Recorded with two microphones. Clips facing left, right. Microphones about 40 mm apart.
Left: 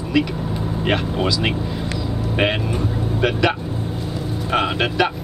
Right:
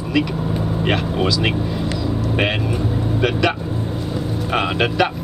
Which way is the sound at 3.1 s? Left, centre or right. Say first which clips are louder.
Even; centre.